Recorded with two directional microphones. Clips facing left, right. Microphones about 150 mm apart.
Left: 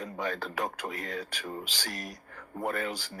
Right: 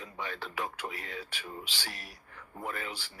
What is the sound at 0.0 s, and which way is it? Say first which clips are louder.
Speech: left 6 dB; 45° left (ahead or behind).